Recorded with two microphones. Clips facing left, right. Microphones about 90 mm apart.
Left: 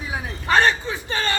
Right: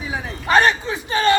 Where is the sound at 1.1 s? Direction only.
15° right (ahead or behind).